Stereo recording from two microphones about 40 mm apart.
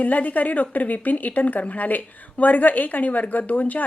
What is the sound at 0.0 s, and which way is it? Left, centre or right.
A woman's voice, left.